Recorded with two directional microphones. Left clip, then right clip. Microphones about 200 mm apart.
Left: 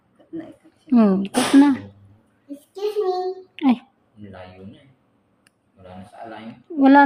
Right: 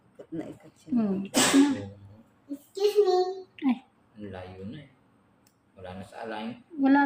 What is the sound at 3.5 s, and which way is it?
Speech, 55° left (ahead or behind).